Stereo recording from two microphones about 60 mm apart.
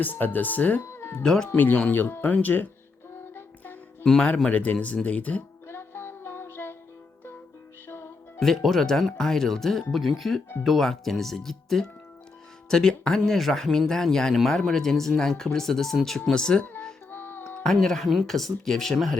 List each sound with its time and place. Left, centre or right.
0.0 s speech: left
0.9 s music: left
1.2 s speech: centre
1.5 s speech: left
3.3 s music: left
4.0 s speech: centre
4.4 s speech: left
5.6 s music: left
7.9 s music: left
8.4 s speech: centre
17.1 s music: left
17.6 s speech: centre